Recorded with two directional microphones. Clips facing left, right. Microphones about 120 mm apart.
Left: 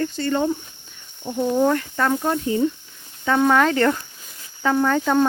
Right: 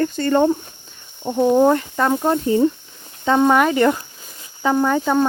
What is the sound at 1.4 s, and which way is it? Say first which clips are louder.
Speech: right 5 dB; 30° right (ahead or behind).